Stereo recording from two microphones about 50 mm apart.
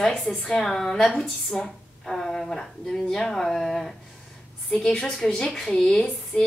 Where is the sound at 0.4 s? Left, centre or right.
Centre.